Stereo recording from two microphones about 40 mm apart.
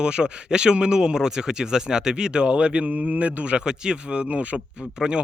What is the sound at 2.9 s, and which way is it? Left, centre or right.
Speech, right.